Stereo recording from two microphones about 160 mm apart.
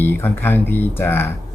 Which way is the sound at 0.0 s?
15° left (ahead or behind).